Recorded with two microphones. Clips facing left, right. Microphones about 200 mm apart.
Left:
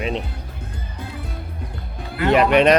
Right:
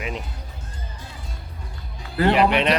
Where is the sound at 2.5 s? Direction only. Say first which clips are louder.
Left 7 dB; 45° left (ahead or behind).